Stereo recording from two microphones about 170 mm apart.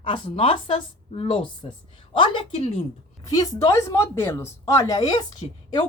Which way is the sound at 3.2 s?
20° left (ahead or behind).